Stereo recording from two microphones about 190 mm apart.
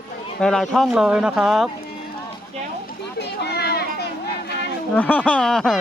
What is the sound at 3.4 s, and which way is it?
Children playing, 60° left (ahead or behind).